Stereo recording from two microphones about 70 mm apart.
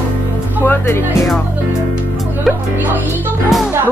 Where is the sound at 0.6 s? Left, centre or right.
Left.